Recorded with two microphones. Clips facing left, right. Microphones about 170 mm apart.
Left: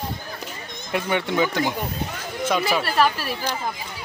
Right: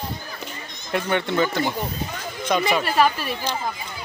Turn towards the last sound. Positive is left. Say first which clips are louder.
# right 1 dB
turn(degrees=5)  # may be behind; listen again after turning